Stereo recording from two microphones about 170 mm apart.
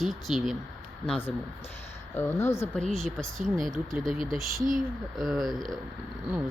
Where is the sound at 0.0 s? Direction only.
Centre (ahead or behind).